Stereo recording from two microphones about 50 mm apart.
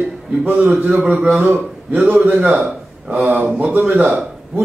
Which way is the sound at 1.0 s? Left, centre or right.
Right.